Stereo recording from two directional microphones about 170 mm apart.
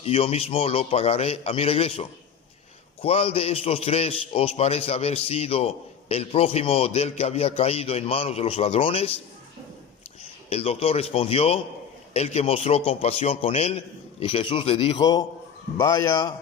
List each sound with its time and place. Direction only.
0.0 s a man's voice: 35° left (ahead or behind)
10.5 s a man's voice: 35° left (ahead or behind)
15.0 s a man's voice: 25° left (ahead or behind)